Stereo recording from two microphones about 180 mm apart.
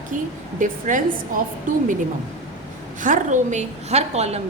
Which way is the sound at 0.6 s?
45° right (ahead or behind).